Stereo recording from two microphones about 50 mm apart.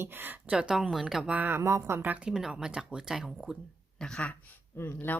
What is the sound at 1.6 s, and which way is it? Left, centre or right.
Speech, right.